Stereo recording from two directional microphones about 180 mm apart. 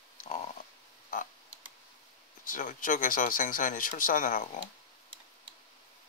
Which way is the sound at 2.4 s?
50° left (ahead or behind).